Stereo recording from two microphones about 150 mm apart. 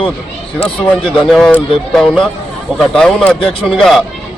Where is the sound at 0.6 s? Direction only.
40° left (ahead or behind).